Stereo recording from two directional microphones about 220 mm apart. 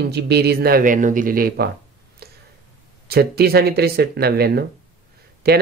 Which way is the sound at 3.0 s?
45° right (ahead or behind).